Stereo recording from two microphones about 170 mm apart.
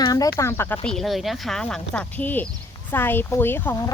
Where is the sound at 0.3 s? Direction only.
15° left (ahead or behind).